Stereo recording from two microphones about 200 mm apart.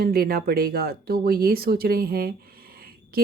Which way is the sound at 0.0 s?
50° right (ahead or behind).